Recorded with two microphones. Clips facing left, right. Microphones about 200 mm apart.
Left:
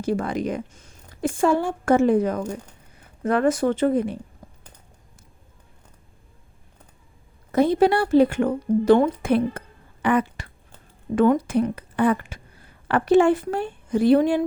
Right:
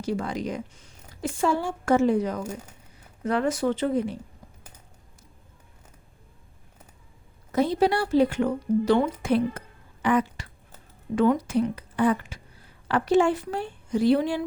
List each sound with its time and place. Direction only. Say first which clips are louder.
0.0 s a woman's voice: left 4 dB; 55° left (ahead or behind)
7.5 s a woman's voice: left 4 dB; 55° left (ahead or behind)